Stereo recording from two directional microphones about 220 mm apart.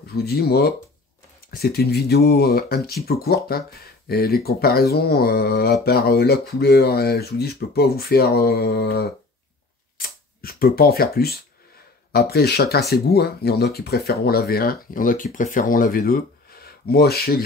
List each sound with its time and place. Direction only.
0.0 s speech: 45° left (ahead or behind)